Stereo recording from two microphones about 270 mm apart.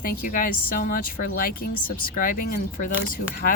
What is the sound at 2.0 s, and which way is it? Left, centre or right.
Speech, left.